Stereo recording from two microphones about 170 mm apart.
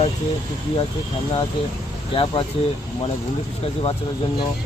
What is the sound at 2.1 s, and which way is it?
Speech, 30° left (ahead or behind).